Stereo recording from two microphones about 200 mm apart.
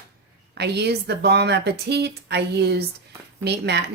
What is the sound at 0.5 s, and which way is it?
Speech, 55° right (ahead or behind).